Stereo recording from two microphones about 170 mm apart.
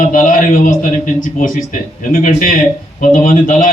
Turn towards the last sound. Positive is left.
turn(degrees=50)  # may be behind; listen again after turning